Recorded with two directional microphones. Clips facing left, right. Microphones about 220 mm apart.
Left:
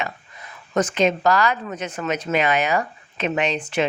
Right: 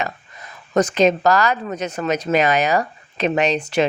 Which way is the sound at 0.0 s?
40° right (ahead or behind).